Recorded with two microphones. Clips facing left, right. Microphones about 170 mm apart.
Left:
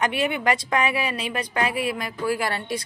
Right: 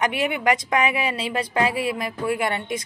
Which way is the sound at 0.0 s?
20° right (ahead or behind).